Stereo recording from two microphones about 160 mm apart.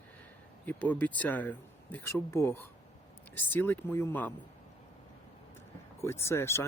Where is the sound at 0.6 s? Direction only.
10° left (ahead or behind).